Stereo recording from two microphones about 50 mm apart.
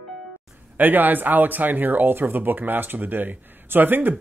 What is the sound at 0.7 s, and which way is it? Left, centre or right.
Speech, right.